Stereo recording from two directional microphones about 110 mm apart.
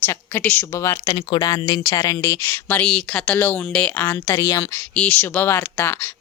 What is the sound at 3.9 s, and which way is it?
Speech, 25° left (ahead or behind).